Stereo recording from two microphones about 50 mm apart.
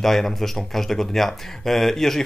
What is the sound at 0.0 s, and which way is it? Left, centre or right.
Speech, centre.